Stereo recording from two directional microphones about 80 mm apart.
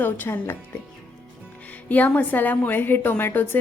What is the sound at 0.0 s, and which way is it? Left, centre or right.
Speech, left.